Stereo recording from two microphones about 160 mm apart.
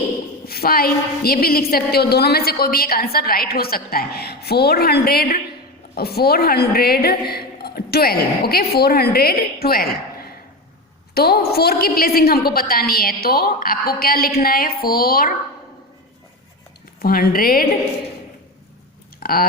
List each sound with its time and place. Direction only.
0.4 s a woman's voice: 70° left (ahead or behind)
17.0 s a woman's voice: 70° left (ahead or behind)
19.2 s speech: 65° left (ahead or behind)